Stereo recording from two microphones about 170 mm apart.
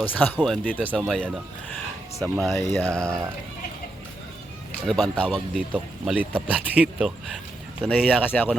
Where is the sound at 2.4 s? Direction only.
Centre (ahead or behind).